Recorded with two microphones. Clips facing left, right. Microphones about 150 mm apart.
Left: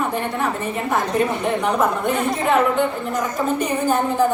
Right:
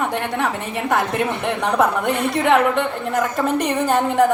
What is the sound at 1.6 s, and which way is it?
A woman's voice, 75° right (ahead or behind).